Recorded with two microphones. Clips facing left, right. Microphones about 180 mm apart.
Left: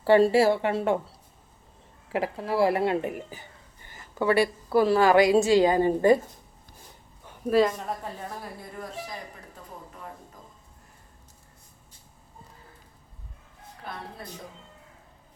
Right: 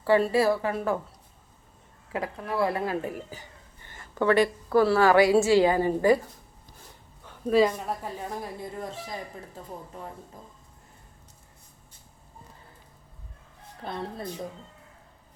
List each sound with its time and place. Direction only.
0.0 s speech: 30° left (ahead or behind)
2.1 s speech: 25° left (ahead or behind)
3.2 s a woman's voice: 15° left (ahead or behind)
7.5 s a woman's voice: centre (ahead or behind)
8.7 s speech: 25° right (ahead or behind)